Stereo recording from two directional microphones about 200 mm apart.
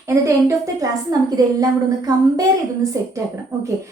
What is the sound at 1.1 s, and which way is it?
A woman's voice, 20° right (ahead or behind).